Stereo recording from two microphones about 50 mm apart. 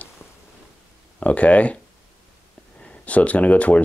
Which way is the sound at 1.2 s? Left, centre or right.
Left.